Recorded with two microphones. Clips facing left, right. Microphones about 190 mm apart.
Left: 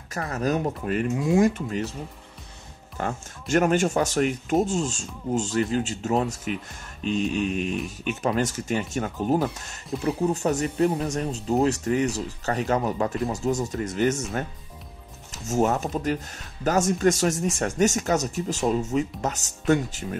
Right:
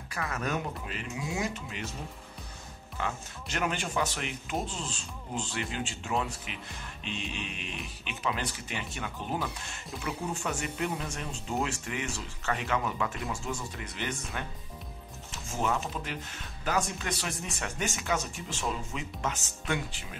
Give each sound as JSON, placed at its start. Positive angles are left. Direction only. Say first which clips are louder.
{"t": 0.1, "sound": "speech", "louder": "left 7 dB", "side_deg": 40}
{"t": 0.8, "sound": "speech", "louder": "left 13 dB", "side_deg": 50}
{"t": 3.0, "sound": "speech", "louder": "left 5 dB", "side_deg": 45}